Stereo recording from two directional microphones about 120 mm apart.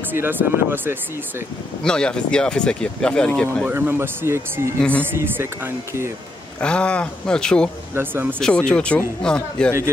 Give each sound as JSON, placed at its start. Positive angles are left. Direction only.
{"t": 0.1, "sound": "speech", "side_deg": -15}
{"t": 1.8, "sound": "speech", "side_deg": 5}
{"t": 3.6, "sound": "speech", "side_deg": -20}
{"t": 6.6, "sound": "speech", "side_deg": 10}
{"t": 7.9, "sound": "speech", "side_deg": -15}
{"t": 8.4, "sound": "speech", "side_deg": 5}